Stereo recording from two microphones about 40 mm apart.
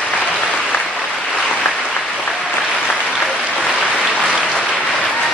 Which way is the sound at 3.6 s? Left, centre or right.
Centre.